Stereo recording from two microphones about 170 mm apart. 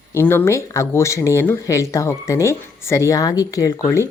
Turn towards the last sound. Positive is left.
turn(degrees=20)  # may be behind; listen again after turning